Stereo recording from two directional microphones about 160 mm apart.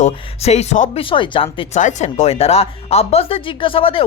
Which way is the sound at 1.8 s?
50° left (ahead or behind).